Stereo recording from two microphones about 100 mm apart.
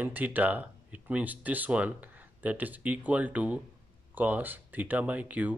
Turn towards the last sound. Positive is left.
turn(degrees=-15)  # may be behind; listen again after turning